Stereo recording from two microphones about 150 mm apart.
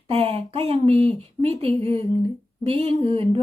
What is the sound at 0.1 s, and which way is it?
A woman's voice, 40° right (ahead or behind).